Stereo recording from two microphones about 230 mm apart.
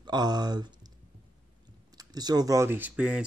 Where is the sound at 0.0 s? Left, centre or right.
Centre.